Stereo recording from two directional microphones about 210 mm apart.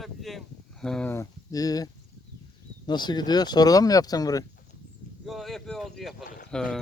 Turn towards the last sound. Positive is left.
turn(degrees=40)  # may be behind; listen again after turning